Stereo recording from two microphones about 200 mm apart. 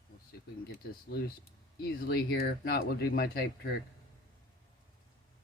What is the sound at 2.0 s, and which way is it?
Speech, 50° left (ahead or behind).